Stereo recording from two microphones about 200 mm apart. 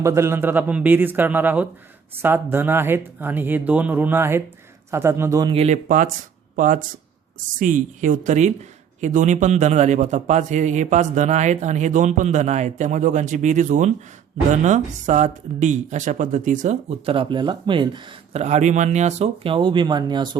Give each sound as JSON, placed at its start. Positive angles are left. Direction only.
{"t": 0.0, "sound": "speech", "side_deg": -15}
{"t": 5.5, "sound": "a man's voice", "side_deg": -35}
{"t": 18.4, "sound": "speech", "side_deg": -35}